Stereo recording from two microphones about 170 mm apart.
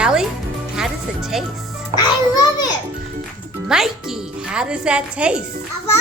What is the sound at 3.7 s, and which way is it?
Speech, 5° right (ahead or behind).